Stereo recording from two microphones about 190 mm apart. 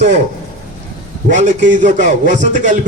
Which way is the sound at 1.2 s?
40° right (ahead or behind).